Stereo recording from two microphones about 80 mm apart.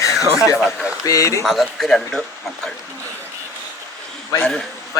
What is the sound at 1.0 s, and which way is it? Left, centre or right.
Speech, left.